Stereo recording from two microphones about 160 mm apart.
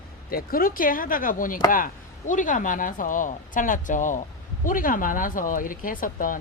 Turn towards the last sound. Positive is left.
turn(degrees=60)  # may be behind; listen again after turning